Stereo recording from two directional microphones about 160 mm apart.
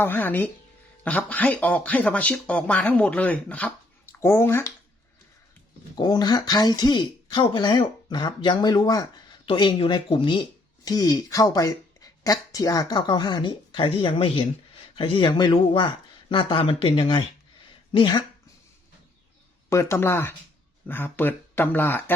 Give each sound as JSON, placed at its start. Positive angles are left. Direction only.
{"t": 0.0, "sound": "speech", "side_deg": 10}
{"t": 6.0, "sound": "speech", "side_deg": 25}
{"t": 19.7, "sound": "speech", "side_deg": 20}